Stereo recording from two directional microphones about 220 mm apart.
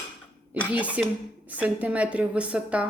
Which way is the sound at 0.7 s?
5° right (ahead or behind).